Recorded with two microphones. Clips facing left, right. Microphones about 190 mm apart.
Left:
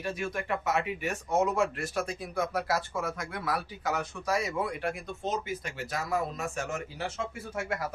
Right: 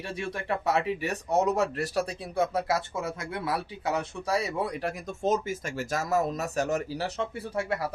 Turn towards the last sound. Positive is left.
turn(degrees=-35)  # may be behind; listen again after turning